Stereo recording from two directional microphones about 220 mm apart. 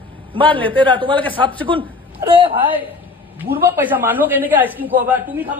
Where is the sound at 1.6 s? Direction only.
20° right (ahead or behind).